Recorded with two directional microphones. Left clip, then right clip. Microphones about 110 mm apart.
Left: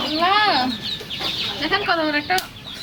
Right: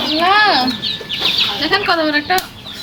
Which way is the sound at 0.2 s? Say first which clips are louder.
Right 5 dB; 5° right (ahead or behind).